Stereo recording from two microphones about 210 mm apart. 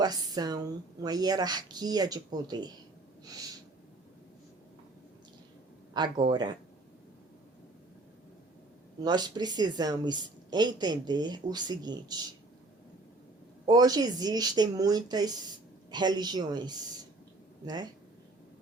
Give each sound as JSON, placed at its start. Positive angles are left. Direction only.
{"t": 0.0, "sound": "a woman's voice", "side_deg": -20}
{"t": 5.9, "sound": "a woman's voice", "side_deg": -25}
{"t": 9.0, "sound": "a woman's voice", "side_deg": -20}
{"t": 13.7, "sound": "a woman's voice", "side_deg": -20}